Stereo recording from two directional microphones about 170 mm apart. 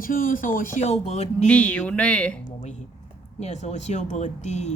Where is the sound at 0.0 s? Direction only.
55° left (ahead or behind).